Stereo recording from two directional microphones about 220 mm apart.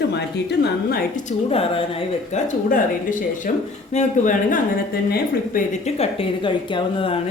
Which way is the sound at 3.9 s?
35° left (ahead or behind).